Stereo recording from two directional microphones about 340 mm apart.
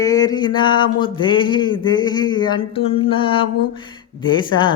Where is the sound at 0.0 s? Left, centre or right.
Centre.